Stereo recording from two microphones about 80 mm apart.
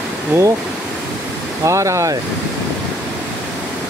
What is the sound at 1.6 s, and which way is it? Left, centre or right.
Speech, right.